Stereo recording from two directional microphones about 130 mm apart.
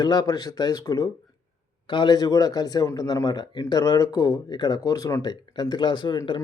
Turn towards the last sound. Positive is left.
turn(degrees=35)  # may be behind; listen again after turning